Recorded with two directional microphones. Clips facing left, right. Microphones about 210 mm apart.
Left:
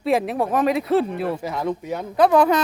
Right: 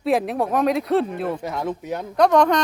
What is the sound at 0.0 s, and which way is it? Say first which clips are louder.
Speech: even; centre (ahead or behind).